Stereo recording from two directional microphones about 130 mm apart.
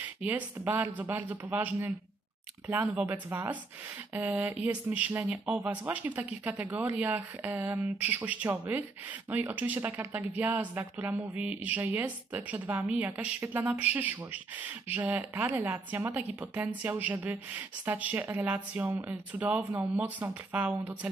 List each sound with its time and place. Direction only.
0.0 s speech: 15° right (ahead or behind)